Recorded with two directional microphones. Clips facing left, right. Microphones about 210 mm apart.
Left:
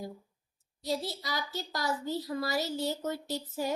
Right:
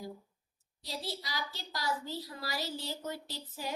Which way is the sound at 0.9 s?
45° left (ahead or behind).